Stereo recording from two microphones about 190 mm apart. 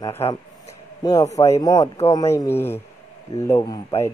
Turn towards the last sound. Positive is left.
turn(degrees=20)  # may be behind; listen again after turning